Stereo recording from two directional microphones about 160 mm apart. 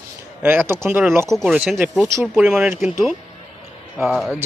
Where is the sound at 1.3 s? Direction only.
Centre (ahead or behind).